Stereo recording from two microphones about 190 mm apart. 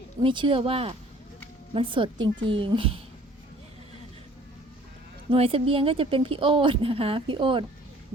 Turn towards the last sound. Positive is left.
turn(degrees=-25)  # may be behind; listen again after turning